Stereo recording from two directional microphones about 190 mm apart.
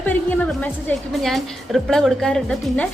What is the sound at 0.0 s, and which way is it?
A woman's voice, 10° left (ahead or behind).